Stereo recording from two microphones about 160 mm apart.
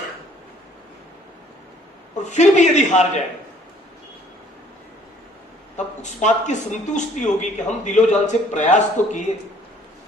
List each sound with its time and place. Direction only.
2.2 s speech: 50° left (ahead or behind)
5.7 s speech: 50° left (ahead or behind)